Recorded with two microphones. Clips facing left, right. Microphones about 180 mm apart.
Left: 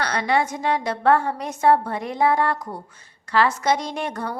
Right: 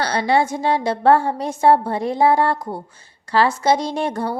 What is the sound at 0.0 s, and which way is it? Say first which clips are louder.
A woman's voice: right 4 dB; 30° right (ahead or behind).